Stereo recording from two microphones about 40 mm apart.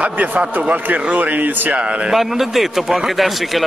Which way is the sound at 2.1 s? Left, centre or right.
Centre.